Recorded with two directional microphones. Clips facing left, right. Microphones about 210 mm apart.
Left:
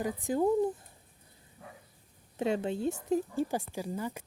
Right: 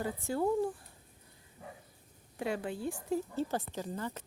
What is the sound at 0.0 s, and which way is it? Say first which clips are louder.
Speech: left 4 dB; 15° left (ahead or behind).